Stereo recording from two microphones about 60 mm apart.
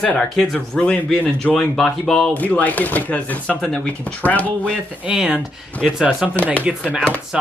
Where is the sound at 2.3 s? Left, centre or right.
Left.